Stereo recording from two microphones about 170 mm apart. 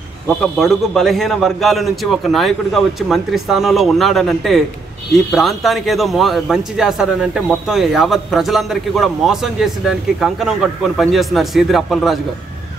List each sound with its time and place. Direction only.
0.6 s a man's voice: centre (ahead or behind)